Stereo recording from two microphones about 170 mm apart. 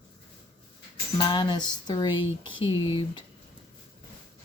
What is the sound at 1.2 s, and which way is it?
Speech, 25° left (ahead or behind).